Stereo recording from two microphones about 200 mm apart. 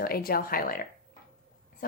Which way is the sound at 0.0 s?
50° left (ahead or behind).